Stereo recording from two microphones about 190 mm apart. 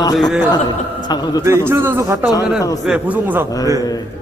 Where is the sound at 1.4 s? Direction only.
10° right (ahead or behind).